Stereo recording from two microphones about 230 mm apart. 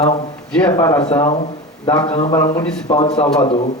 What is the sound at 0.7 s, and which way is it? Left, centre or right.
Speech, centre.